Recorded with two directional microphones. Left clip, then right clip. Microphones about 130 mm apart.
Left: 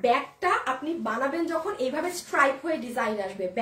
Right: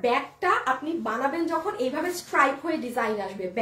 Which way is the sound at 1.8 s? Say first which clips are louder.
Right 1 dB; 20° left (ahead or behind).